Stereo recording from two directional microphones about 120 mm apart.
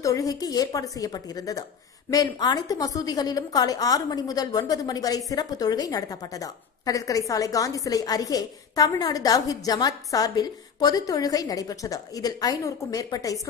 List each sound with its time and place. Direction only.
0.0 s a woman's voice: 30° left (ahead or behind)